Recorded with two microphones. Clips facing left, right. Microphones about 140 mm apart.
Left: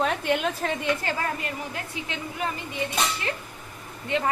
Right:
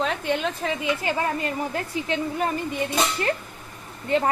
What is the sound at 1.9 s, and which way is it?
Speech, 35° right (ahead or behind).